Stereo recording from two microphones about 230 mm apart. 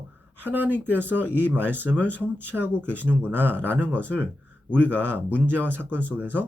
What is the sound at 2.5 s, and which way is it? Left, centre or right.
Speech, centre.